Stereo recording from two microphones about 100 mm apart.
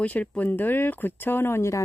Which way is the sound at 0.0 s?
15° left (ahead or behind).